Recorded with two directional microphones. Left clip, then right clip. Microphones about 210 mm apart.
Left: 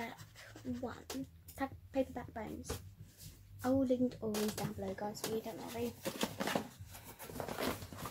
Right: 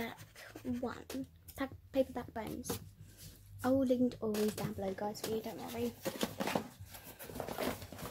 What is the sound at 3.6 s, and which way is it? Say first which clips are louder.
Speech: right 2 dB; 45° right (ahead or behind).